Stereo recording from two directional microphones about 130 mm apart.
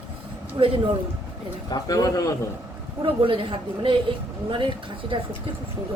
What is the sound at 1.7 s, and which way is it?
Speech, 30° left (ahead or behind).